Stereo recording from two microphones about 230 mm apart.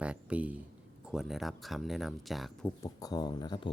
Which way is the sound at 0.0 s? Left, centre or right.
Centre.